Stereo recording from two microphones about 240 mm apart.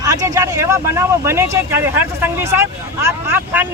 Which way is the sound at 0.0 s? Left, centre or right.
Centre.